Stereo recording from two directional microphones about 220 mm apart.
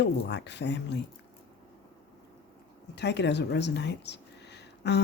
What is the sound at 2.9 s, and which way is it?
Speech, 50° left (ahead or behind).